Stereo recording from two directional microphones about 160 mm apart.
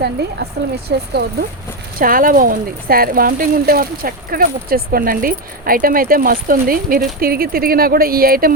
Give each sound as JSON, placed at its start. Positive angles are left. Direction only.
{"t": 0.9, "sound": "speech", "side_deg": -80}
{"t": 2.0, "sound": "speech", "side_deg": -60}